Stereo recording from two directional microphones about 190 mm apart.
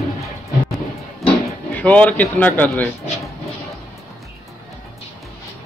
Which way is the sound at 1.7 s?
10° left (ahead or behind).